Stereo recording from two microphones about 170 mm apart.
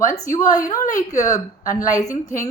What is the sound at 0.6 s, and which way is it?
A woman's voice, 20° left (ahead or behind).